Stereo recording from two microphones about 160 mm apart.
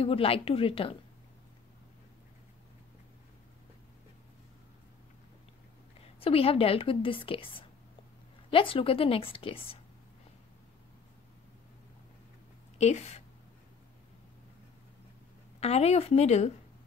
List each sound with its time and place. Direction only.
0.0 s a woman's voice: 35° left (ahead or behind)
6.1 s a woman's voice: 35° left (ahead or behind)
12.7 s speech: 45° left (ahead or behind)
15.6 s a woman's voice: 40° left (ahead or behind)